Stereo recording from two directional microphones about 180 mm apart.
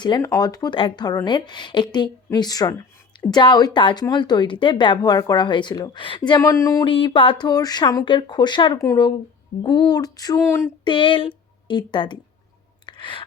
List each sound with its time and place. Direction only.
0.0 s speech: 20° left (ahead or behind)
6.9 s speech: 30° left (ahead or behind)
10.8 s a woman's voice: 30° left (ahead or behind)
12.8 s a sound: 25° left (ahead or behind)